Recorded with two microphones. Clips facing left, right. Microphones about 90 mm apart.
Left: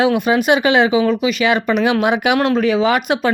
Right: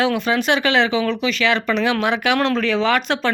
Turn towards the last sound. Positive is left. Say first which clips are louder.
# left 3 dB
turn(degrees=15)  # may be behind; listen again after turning